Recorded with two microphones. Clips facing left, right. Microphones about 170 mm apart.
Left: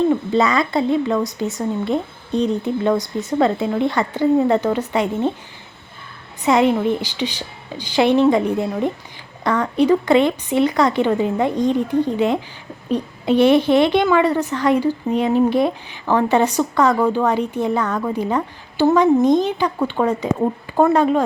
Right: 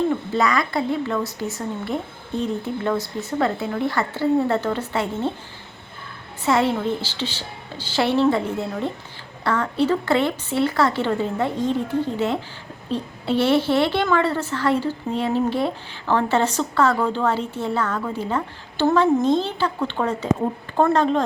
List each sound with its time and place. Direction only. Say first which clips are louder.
0.3 s a woman's voice: left 4 dB; 25° left (ahead or behind)
6.4 s a woman's voice: left 4 dB; 15° left (ahead or behind)